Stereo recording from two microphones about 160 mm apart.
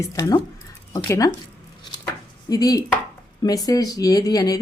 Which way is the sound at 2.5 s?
25° left (ahead or behind).